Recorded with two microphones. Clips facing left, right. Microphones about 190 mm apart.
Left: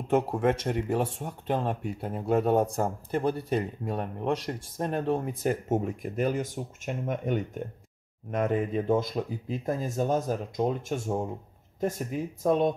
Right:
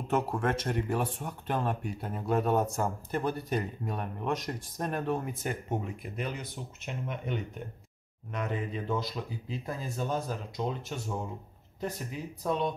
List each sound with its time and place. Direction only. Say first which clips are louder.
0.1 s speech: left 5 dB; 20° left (ahead or behind); by 12.7 s 50° left (ahead or behind)